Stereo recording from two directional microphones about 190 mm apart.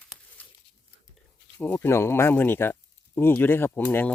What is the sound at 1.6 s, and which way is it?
Speech, 10° left (ahead or behind).